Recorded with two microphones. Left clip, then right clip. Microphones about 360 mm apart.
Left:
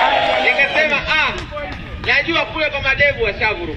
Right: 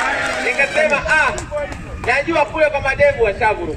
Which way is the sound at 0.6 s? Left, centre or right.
Right.